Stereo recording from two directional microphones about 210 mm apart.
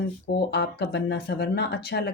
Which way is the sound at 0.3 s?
50° left (ahead or behind).